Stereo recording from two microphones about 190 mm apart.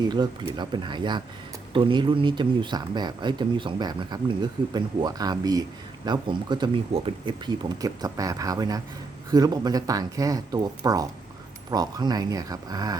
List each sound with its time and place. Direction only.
0.0 s speech: 20° right (ahead or behind)